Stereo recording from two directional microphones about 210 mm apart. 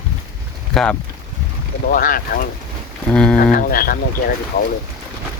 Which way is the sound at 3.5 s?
40° left (ahead or behind).